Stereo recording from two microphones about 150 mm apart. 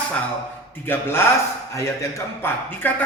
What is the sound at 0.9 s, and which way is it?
Speech, 15° left (ahead or behind).